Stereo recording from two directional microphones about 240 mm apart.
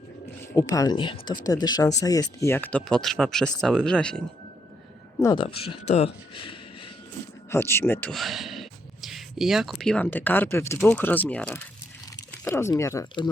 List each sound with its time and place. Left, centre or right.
0.5 s speech: centre
5.2 s speech: centre
7.5 s speech: centre